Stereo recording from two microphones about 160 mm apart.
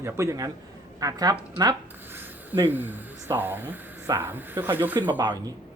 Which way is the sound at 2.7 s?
10° right (ahead or behind).